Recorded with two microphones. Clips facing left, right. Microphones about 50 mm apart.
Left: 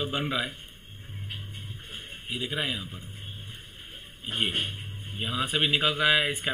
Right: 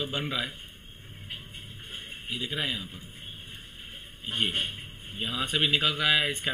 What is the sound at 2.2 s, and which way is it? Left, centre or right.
Speech, centre.